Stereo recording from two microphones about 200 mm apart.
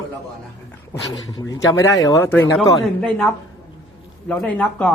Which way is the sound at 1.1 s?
20° left (ahead or behind).